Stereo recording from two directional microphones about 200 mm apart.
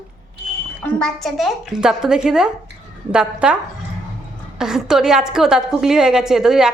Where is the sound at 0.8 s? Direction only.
Centre (ahead or behind).